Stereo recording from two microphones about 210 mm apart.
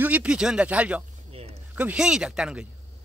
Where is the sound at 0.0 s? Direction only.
5° right (ahead or behind).